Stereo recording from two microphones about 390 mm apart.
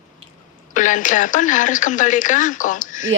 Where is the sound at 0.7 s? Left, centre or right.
Centre.